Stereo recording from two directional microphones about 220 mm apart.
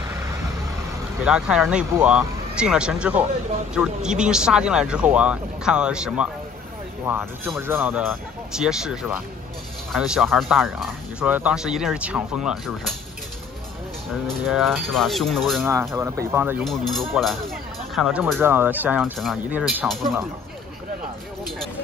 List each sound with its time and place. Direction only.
1.2 s speech: 5° right (ahead or behind)
14.2 s speech: centre (ahead or behind)
15.7 s speech: 10° right (ahead or behind)
16.6 s speech: centre (ahead or behind)